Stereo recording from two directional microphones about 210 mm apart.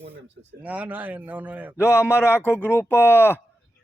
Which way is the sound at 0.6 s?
5° right (ahead or behind).